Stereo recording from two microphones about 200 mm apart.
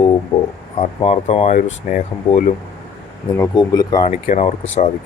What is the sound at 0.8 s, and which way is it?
Speech, 30° left (ahead or behind).